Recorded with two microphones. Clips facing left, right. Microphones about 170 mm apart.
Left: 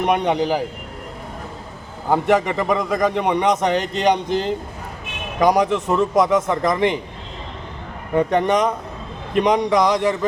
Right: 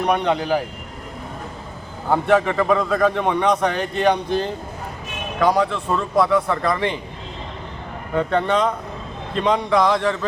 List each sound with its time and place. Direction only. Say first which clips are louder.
0.0 s a man's voice: left 1 dB; 20° left (ahead or behind)
2.0 s a man's voice: even; 15° left (ahead or behind)
8.1 s a man's voice: left 2 dB; 15° left (ahead or behind)